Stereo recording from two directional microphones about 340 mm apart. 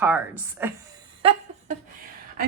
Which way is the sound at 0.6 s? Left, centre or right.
Centre.